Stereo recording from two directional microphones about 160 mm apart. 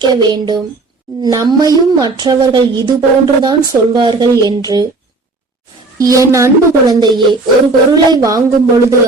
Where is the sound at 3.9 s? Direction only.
25° right (ahead or behind).